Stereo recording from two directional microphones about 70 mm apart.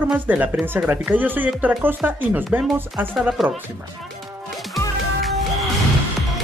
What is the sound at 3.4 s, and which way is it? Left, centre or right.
Speech, centre.